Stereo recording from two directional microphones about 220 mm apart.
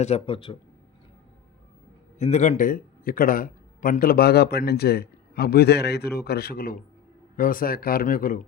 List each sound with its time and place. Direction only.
0.0 s speech: 25° left (ahead or behind)
2.1 s a man's voice: 30° left (ahead or behind)